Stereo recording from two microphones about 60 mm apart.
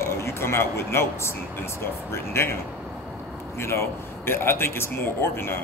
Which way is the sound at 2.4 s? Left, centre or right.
Left.